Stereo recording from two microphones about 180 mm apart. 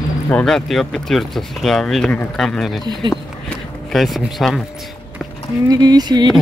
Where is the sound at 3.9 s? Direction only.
Centre (ahead or behind).